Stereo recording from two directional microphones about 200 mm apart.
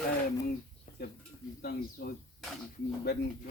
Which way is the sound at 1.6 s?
50° left (ahead or behind).